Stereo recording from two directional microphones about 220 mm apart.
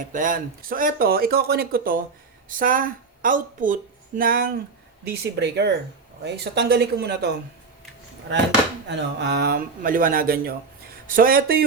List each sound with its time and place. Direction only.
0.0 s speech: 35° right (ahead or behind)
8.9 s speech: 50° right (ahead or behind)